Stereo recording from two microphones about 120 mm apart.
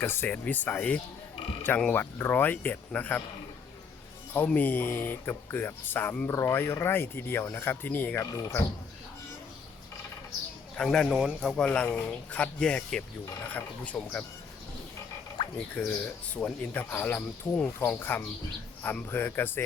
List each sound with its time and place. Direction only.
0.0 s speech: 20° left (ahead or behind)
4.4 s speech: 15° left (ahead or behind); by 8.5 s 30° left (ahead or behind)
10.8 s speech: 5° left (ahead or behind)
15.5 s speech: 10° left (ahead or behind)